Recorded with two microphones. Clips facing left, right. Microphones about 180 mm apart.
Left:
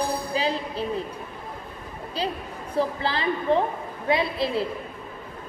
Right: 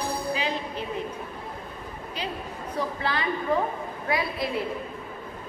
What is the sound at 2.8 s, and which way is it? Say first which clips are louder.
A woman's voice: left 4 dB; 30° left (ahead or behind).